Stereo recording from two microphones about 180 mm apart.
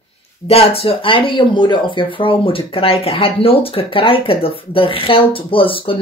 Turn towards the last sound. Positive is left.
turn(degrees=30)  # may be behind; listen again after turning